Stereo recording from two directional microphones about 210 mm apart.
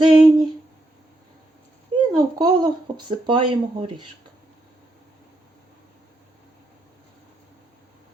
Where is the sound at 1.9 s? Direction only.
25° right (ahead or behind).